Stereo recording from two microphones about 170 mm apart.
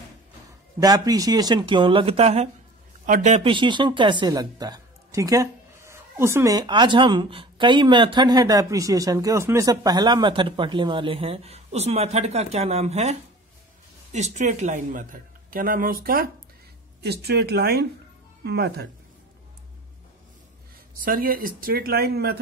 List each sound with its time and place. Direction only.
0.7 s speech: 20° right (ahead or behind); by 3.4 s 45° right (ahead or behind)
3.4 s speech: 30° right (ahead or behind); by 16.3 s 55° right (ahead or behind)
17.0 s speech: 70° right (ahead or behind)
21.0 s speech: 55° right (ahead or behind)